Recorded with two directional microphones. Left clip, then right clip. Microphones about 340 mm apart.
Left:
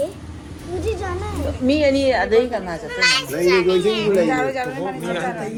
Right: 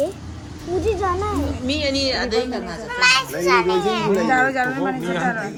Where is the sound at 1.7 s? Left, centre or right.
Centre.